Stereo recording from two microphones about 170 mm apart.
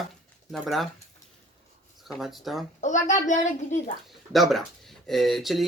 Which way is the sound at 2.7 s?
45° left (ahead or behind).